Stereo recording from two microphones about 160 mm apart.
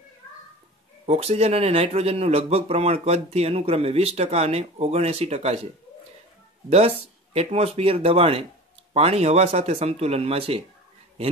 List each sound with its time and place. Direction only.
1.0 s speech: 40° right (ahead or behind)
6.7 s speech: 40° right (ahead or behind)